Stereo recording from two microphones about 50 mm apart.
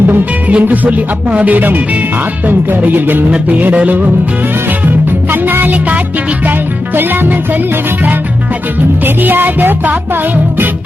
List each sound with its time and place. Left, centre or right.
0.1 s music: right
5.3 s music: right
9.0 s music: right